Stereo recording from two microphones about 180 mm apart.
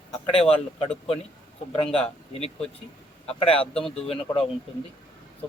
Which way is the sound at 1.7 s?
30° left (ahead or behind).